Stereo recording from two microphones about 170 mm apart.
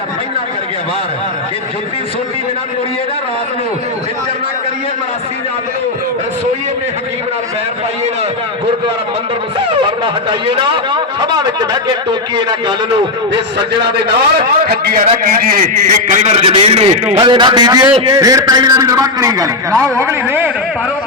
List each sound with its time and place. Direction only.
9.8 s a man's voice: 30° right (ahead or behind)
14.7 s a man's voice: 60° right (ahead or behind); by 17.2 s 40° right (ahead or behind)
17.2 s a man's voice: 25° right (ahead or behind)